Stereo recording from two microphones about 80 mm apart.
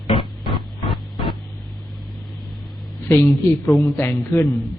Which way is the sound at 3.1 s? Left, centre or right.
Left.